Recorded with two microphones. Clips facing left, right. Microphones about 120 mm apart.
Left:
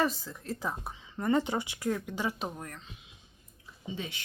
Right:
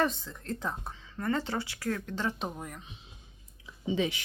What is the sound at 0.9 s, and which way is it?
Speech, 15° left (ahead or behind).